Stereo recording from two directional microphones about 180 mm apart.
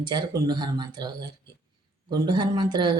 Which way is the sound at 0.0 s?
25° right (ahead or behind).